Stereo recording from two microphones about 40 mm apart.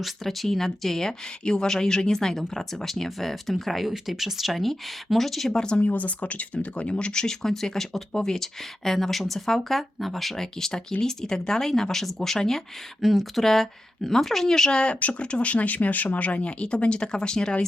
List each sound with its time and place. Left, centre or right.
0.0 s speech: centre
5.7 s speech: left
7.4 s speech: centre
10.3 s speech: centre
15.0 s speech: left